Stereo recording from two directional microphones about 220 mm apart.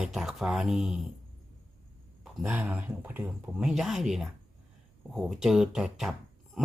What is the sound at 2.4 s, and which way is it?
Speech, 10° right (ahead or behind).